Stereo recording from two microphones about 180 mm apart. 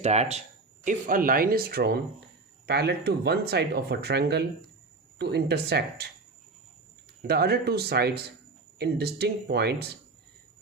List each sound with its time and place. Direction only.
0.0 s speech: 40° right (ahead or behind)
0.9 s speech: 50° right (ahead or behind); by 6.1 s 65° right (ahead or behind)
7.2 s speech: 60° right (ahead or behind)